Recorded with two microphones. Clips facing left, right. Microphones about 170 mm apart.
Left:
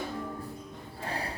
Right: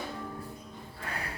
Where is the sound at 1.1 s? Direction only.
30° left (ahead or behind).